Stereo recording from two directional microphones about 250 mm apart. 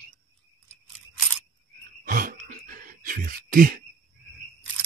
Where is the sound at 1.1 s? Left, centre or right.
Centre.